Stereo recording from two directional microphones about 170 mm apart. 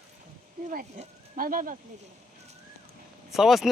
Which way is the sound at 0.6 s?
50° right (ahead or behind).